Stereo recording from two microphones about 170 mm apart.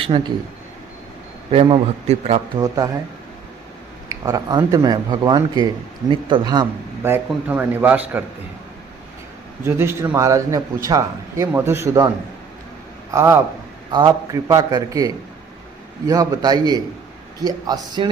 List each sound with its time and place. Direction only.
0.1 s a man's voice: 30° right (ahead or behind)
1.5 s a man's voice: 35° right (ahead or behind)
2.6 s speech: 20° right (ahead or behind)
4.1 s speech: 25° right (ahead or behind)
7.0 s a man's voice: 10° right (ahead or behind)
9.6 s a man's voice: 15° right (ahead or behind)
13.1 s a man's voice: 15° right (ahead or behind)
13.9 s speech: 25° right (ahead or behind)